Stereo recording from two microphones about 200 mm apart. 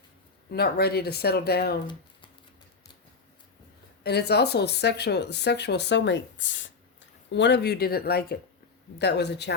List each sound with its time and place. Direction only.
0.5 s speech: 50° left (ahead or behind)
4.0 s speech: 55° left (ahead or behind)